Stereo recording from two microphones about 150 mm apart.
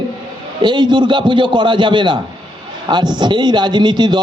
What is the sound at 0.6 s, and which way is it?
A man's voice, 30° right (ahead or behind).